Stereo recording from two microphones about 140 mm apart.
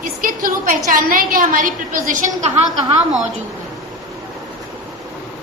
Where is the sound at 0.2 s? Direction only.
80° right.